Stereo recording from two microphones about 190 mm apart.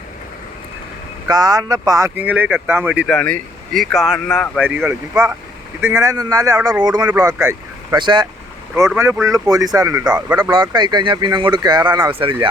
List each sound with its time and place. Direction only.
1.3 s speech: 20° right (ahead or behind)
3.2 s speech: 5° left (ahead or behind)
4.6 s speech: 10° right (ahead or behind)
6.8 s speech: 20° right (ahead or behind)
10.1 s speech: 5° right (ahead or behind)
10.3 s speech: 20° right (ahead or behind)